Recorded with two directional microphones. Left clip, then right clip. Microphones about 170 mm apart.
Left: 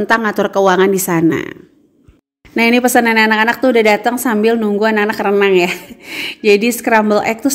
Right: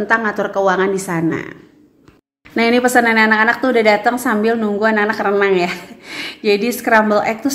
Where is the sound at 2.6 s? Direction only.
35° left (ahead or behind).